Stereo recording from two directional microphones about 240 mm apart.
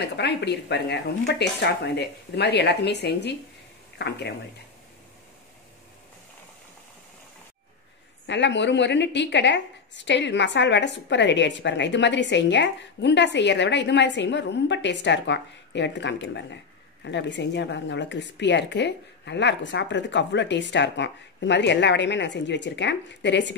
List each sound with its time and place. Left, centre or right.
0.0 s a woman's voice: left
8.3 s a woman's voice: left